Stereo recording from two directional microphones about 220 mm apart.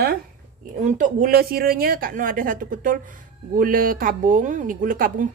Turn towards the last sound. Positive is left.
turn(degrees=-40)  # may be behind; listen again after turning